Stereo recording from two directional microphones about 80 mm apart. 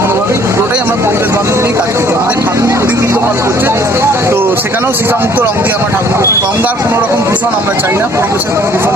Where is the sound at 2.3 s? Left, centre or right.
Right.